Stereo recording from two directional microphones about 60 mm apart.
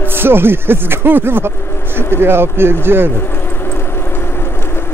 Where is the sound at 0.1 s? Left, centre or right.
Right.